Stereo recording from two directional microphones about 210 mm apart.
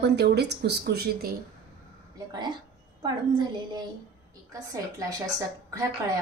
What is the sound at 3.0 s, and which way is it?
Speech, 20° right (ahead or behind).